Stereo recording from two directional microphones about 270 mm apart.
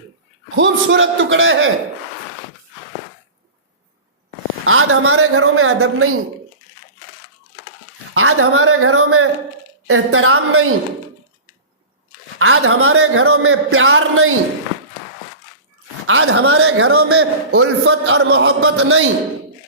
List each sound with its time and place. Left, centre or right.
0.5 s a man's voice: right
4.6 s a man's voice: right
8.1 s a man's voice: right
12.4 s a man's voice: right
16.0 s a man's voice: right